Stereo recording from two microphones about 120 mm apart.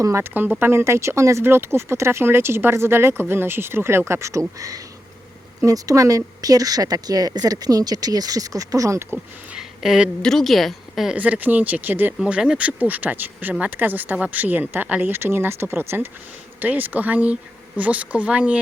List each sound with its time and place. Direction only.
0.0 s speech: 20° right (ahead or behind)
9.5 s a woman's voice: 5° right (ahead or behind)
11.2 s speech: 15° right (ahead or behind)